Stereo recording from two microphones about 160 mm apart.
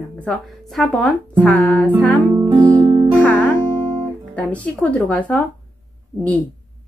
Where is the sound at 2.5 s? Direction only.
25° right (ahead or behind).